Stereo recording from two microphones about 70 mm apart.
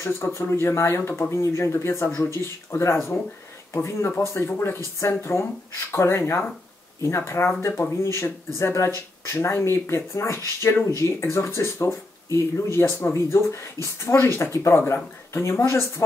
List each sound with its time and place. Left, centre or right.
0.0 s speech: left